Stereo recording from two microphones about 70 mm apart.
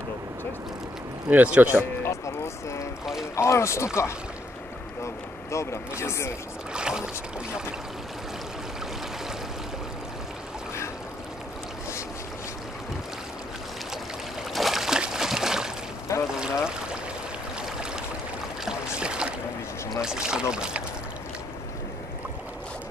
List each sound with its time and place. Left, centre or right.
1.3 s a man's voice: right
2.0 s a sound: left
3.3 s speech: left
6.7 s boat: centre
14.5 s a sound: centre
16.3 s speech: centre
18.7 s boat: centre
20.0 s speech: centre